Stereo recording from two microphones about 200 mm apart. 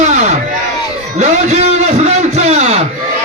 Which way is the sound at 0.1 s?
35° right (ahead or behind).